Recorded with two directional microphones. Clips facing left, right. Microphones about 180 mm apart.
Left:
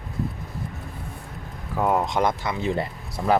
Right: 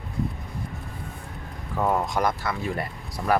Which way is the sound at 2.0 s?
20° left (ahead or behind).